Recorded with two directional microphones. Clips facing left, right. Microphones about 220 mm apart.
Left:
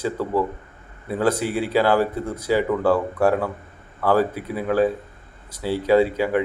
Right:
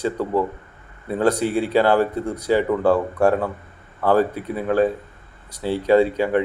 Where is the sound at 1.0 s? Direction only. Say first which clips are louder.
Right 2 dB; 5° left (ahead or behind).